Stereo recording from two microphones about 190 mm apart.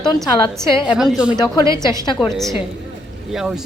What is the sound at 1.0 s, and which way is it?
Speech, 5° right (ahead or behind).